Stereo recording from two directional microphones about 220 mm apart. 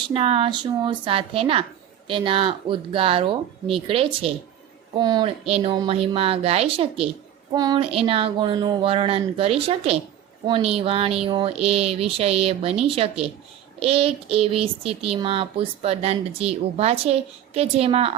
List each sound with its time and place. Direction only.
0.1 s child singing: 25° right (ahead or behind)